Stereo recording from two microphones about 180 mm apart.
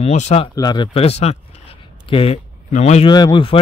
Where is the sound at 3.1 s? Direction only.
25° left (ahead or behind).